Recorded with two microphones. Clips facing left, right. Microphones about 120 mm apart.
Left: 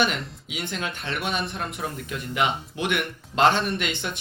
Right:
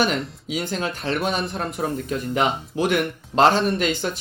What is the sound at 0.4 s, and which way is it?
Speech, 40° right (ahead or behind).